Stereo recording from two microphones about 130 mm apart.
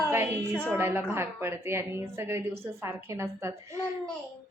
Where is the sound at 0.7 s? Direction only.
20° right (ahead or behind).